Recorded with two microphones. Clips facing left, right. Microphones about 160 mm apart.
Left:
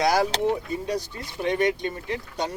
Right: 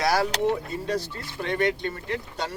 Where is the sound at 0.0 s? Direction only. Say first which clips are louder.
Left 1 dB; 20° left (ahead or behind).